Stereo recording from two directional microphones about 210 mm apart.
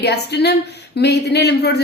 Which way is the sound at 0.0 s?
50° left (ahead or behind).